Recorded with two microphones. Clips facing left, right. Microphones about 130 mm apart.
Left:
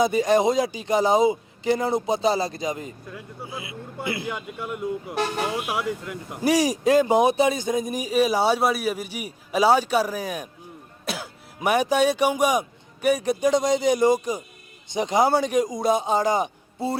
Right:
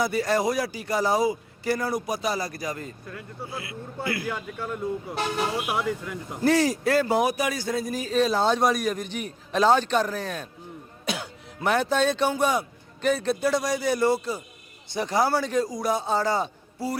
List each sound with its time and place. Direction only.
0.0 s a man's voice: 20° left (ahead or behind)
11.0 s cough: centre (ahead or behind)
11.6 s speech: 10° left (ahead or behind)